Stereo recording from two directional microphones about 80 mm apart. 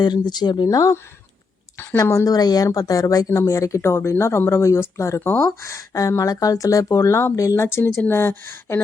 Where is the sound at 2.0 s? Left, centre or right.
Left.